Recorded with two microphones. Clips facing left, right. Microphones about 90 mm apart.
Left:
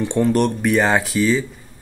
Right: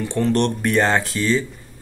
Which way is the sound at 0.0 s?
20° left (ahead or behind).